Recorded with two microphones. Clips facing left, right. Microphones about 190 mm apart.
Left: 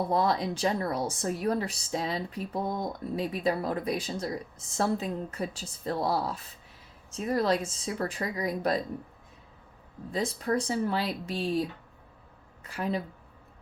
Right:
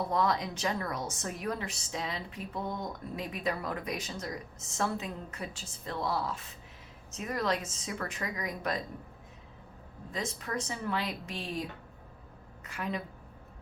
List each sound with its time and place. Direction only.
0.1 s a woman's voice: 30° left (ahead or behind)
10.1 s a woman's voice: 35° left (ahead or behind)
12.6 s a woman's voice: 35° left (ahead or behind)